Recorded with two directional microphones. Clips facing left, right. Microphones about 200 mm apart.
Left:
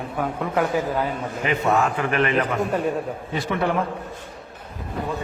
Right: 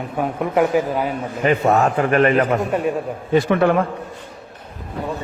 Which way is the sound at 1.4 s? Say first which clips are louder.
Right 5 dB; 40° right (ahead or behind).